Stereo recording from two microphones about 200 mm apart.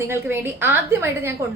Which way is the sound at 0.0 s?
10° right (ahead or behind).